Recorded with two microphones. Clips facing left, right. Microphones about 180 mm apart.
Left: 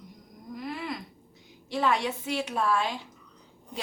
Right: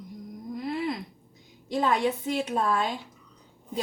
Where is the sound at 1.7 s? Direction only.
40° right (ahead or behind).